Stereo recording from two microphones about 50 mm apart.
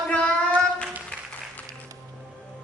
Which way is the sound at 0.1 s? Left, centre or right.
Left.